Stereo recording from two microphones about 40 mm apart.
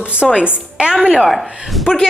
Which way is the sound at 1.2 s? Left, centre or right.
Centre.